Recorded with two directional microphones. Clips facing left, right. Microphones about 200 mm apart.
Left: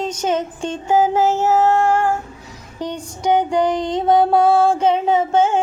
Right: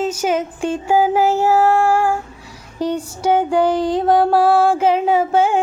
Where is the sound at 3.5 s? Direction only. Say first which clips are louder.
Right 2 dB; 5° right (ahead or behind).